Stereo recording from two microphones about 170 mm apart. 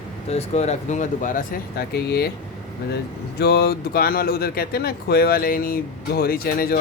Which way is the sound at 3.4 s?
70° left (ahead or behind).